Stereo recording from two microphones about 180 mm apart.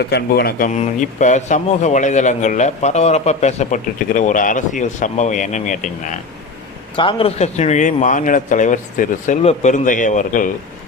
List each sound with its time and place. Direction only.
0.1 s speech: 60° left (ahead or behind)
0.7 s a man's voice: 40° left (ahead or behind)
6.9 s speech: 30° left (ahead or behind); by 10.5 s 45° left (ahead or behind)